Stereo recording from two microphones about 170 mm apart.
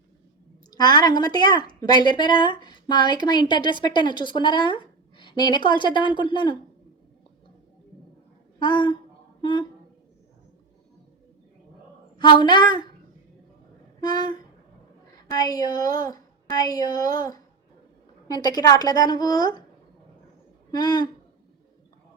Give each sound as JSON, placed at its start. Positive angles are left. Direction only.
{"t": 0.7, "sound": "a woman's voice", "side_deg": 25}
{"t": 8.5, "sound": "a woman's voice", "side_deg": 25}
{"t": 12.1, "sound": "a woman's voice", "side_deg": 25}
{"t": 14.0, "sound": "a woman's voice", "side_deg": 25}
{"t": 20.7, "sound": "a man's voice", "side_deg": 25}